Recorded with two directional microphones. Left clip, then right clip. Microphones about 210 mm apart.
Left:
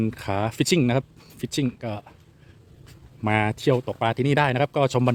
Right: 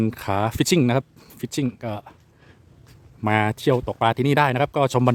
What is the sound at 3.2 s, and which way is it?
Speech, 10° right (ahead or behind).